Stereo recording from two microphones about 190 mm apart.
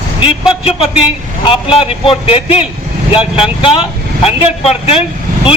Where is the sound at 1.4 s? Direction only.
30° left (ahead or behind).